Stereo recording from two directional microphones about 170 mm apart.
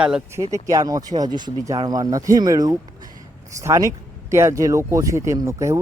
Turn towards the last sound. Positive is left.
turn(degrees=-15)  # may be behind; listen again after turning